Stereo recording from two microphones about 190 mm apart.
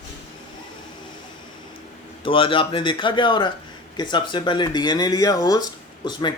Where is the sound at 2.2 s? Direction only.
30° left (ahead or behind).